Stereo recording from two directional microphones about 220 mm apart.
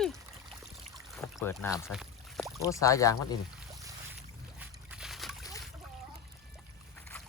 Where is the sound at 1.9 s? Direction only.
Centre (ahead or behind).